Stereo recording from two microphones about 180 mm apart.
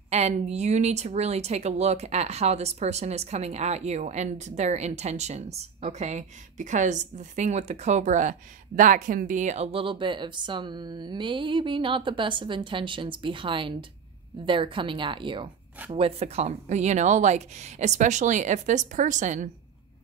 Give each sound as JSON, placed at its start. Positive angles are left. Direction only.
{"t": 0.1, "sound": "a woman's voice", "side_deg": -40}